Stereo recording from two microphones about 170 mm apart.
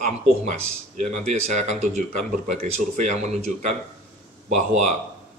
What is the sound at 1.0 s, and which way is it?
Speech, 45° right (ahead or behind).